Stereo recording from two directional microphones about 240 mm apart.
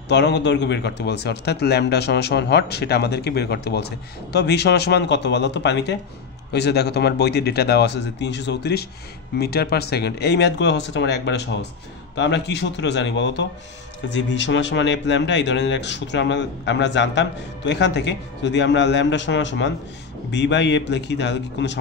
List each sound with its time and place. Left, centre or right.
0.1 s speech: left